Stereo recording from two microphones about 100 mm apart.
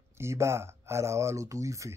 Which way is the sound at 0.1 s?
25° right (ahead or behind).